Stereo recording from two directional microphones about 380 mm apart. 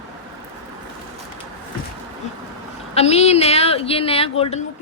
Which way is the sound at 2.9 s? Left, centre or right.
Centre.